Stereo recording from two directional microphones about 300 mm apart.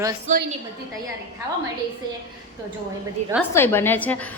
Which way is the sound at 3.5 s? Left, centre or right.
Centre.